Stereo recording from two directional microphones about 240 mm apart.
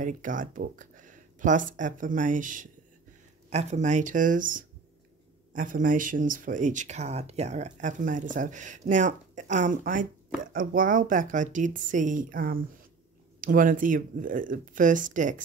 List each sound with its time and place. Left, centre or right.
0.0 s speech: right